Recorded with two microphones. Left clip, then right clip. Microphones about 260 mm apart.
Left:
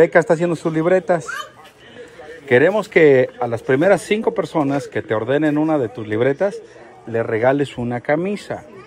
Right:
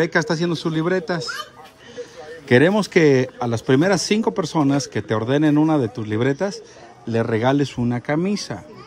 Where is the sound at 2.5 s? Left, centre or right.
Right.